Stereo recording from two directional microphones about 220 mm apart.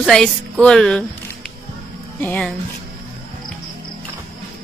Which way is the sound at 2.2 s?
5° left (ahead or behind).